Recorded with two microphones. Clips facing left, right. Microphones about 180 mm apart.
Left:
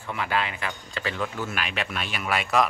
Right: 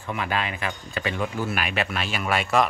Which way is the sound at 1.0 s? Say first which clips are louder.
Right 3 dB; 15° right (ahead or behind).